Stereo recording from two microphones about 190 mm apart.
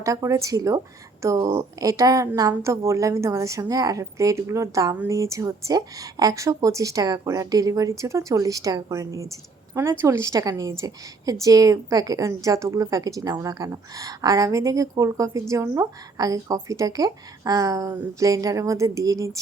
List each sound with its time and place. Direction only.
0.0 s a woman's voice: 15° right (ahead or behind)